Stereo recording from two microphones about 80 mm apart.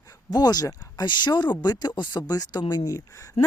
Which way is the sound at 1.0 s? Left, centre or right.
Left.